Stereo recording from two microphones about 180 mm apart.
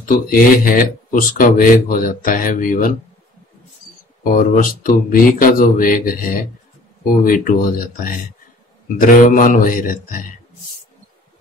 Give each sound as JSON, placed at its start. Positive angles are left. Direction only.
{"t": 0.0, "sound": "speech", "side_deg": 50}
{"t": 4.2, "sound": "speech", "side_deg": 50}